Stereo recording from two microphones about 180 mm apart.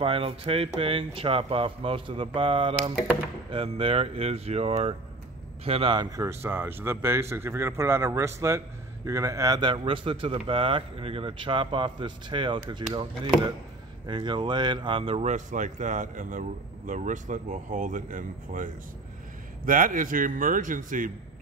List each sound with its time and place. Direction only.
0.0 s speech: 30° right (ahead or behind); by 21.1 s 45° right (ahead or behind)